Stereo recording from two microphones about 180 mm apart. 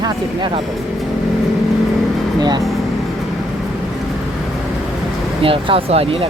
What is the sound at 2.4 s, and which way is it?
Speech, 25° right (ahead or behind).